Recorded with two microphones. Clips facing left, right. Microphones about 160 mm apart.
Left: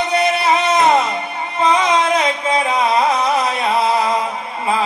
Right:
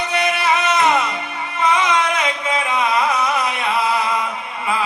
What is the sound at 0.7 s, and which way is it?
Music, 35° left (ahead or behind).